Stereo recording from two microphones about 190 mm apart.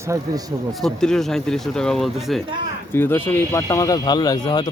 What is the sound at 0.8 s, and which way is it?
A man's voice, 5° left (ahead or behind).